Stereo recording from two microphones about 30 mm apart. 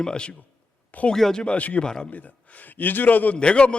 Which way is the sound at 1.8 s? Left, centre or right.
Left.